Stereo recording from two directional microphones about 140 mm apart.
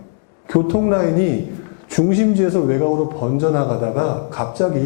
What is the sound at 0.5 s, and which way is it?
A man's voice, 20° left (ahead or behind).